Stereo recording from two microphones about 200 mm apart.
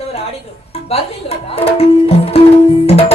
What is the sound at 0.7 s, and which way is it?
Music, 30° left (ahead or behind).